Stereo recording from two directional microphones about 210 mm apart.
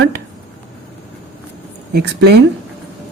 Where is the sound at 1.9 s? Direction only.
50° right (ahead or behind).